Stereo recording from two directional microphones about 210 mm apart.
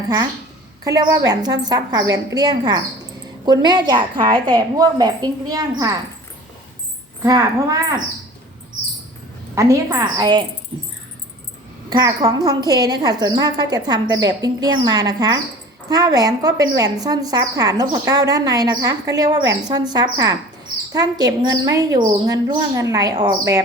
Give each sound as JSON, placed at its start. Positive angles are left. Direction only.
{"t": 0.9, "sound": "a woman's voice", "side_deg": -15}
{"t": 7.2, "sound": "speech", "side_deg": -15}
{"t": 9.6, "sound": "speech", "side_deg": -15}
{"t": 11.9, "sound": "a woman's voice", "side_deg": -15}